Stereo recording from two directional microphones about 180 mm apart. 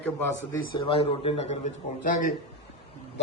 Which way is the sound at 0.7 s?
30° left (ahead or behind).